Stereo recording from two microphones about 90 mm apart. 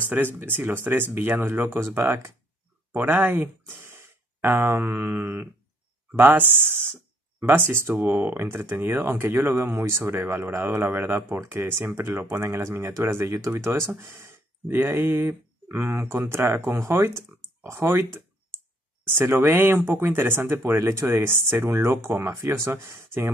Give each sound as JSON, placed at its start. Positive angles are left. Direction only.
{"t": 0.1, "sound": "speech", "side_deg": -20}